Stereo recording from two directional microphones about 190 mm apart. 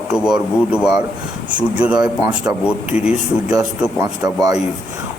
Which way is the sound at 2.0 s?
20° right (ahead or behind).